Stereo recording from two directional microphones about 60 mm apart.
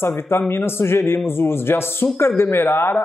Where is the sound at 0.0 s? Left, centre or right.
Left.